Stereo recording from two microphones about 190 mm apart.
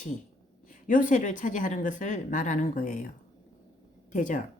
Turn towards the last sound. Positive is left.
turn(degrees=40)  # may be behind; listen again after turning